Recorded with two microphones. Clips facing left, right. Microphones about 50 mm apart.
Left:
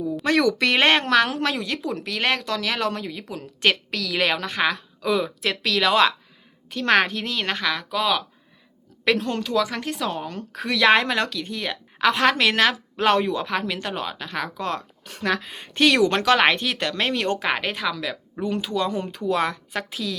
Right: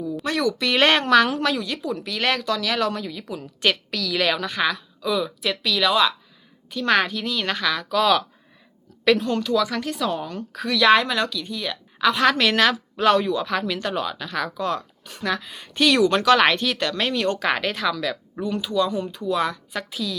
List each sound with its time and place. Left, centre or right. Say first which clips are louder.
0.3 s speech: left 4 dB; left
0.8 s a woman's voice: right 3 dB; left
2.1 s a woman's voice: right 1 dB; left
9.1 s a woman's voice: right 1 dB; left
16.3 s speech: right 1 dB; left
17.4 s a woman's voice: right 2 dB; centre; by 20.1 s left